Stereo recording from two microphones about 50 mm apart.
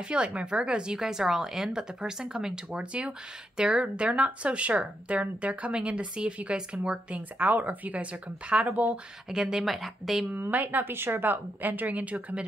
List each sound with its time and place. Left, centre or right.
0.1 s speech: right
0.9 s speech: centre
8.6 s speech: right
9.3 s speech: centre
10.5 s speech: right